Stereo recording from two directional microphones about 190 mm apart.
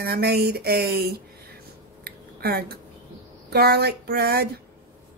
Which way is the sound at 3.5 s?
55° right (ahead or behind).